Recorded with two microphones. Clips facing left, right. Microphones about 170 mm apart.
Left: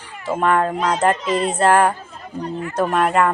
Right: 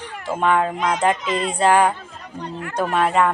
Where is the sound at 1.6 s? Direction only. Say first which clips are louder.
Even; centre (ahead or behind).